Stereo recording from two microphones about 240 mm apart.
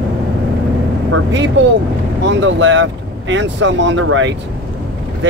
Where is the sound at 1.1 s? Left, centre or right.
Right.